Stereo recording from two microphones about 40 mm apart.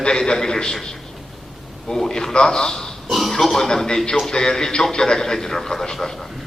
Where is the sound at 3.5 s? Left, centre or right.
Centre.